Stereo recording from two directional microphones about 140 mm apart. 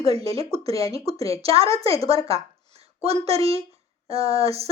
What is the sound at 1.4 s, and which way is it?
Speech, 45° right (ahead or behind).